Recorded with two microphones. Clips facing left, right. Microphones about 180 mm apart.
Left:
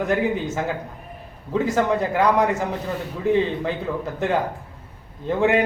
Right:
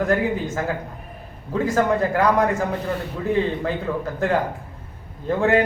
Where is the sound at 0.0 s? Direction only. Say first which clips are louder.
Right 1 dB; 20° left (ahead or behind).